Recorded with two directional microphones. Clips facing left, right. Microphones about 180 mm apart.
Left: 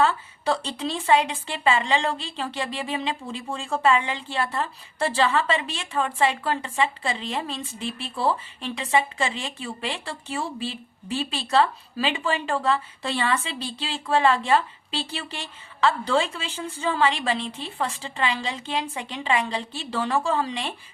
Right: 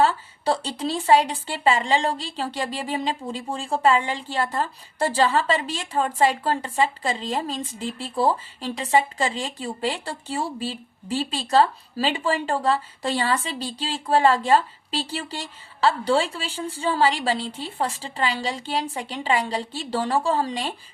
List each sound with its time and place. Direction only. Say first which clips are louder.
0.0 s a woman's voice: right 2 dB; 35° right (ahead or behind)